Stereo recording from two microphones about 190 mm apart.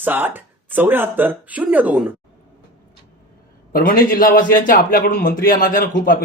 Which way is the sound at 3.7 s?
50° left (ahead or behind).